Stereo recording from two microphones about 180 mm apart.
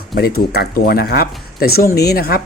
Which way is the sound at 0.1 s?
60° left (ahead or behind).